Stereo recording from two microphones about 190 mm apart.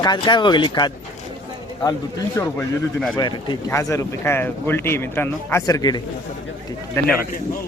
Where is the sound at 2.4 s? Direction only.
15° left (ahead or behind).